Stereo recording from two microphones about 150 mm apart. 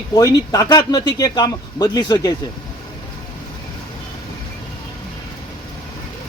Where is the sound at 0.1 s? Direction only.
25° left (ahead or behind).